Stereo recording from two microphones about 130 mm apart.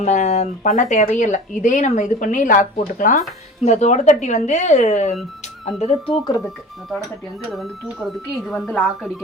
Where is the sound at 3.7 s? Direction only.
65° left (ahead or behind).